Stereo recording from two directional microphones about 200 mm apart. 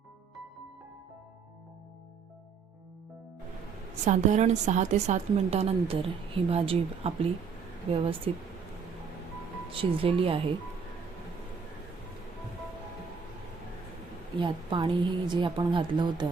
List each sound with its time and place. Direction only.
4.0 s a woman's voice: 35° right (ahead or behind)
9.6 s a woman's voice: 25° right (ahead or behind)
14.3 s a woman's voice: 25° right (ahead or behind)